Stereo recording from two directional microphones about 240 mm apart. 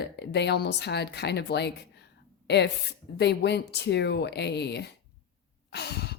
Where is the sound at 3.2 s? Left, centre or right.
Left.